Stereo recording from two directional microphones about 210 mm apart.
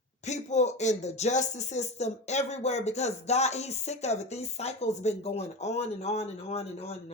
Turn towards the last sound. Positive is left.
turn(degrees=30)  # may be behind; listen again after turning